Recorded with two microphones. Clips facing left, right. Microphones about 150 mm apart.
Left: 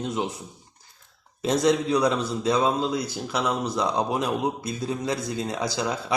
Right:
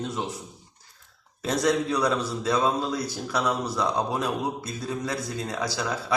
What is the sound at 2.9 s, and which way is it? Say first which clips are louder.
Speech: left 1 dB; 10° left (ahead or behind).